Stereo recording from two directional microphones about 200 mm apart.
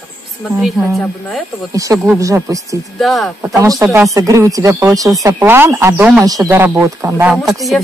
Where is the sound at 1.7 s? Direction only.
15° right (ahead or behind).